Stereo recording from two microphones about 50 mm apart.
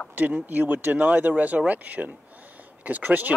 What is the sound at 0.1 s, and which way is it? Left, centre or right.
Speech, right.